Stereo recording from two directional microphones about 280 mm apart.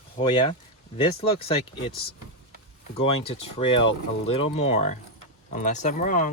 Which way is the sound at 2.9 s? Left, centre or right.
Left.